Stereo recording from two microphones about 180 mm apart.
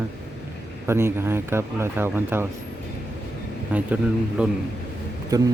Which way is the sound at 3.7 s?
5° right (ahead or behind).